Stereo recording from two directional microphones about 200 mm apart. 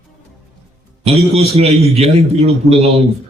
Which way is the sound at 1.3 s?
30° right (ahead or behind).